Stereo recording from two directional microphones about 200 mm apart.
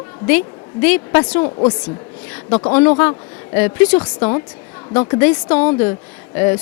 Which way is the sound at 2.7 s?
10° left (ahead or behind).